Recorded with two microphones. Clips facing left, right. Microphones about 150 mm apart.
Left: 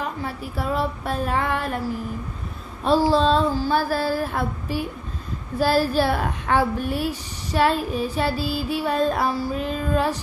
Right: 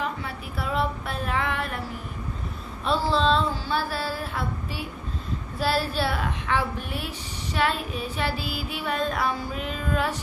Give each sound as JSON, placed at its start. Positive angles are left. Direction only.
{"t": 0.0, "sound": "female singing", "side_deg": 40}
{"t": 3.1, "sound": "child singing", "side_deg": 40}